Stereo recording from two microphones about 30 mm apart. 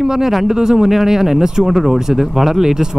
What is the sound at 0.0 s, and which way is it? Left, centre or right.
Speech, centre.